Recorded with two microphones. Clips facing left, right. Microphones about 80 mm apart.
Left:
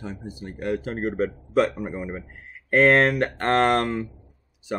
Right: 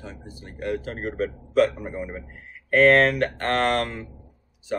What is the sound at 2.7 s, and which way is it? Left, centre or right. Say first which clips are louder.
Speech: right 1 dB; centre.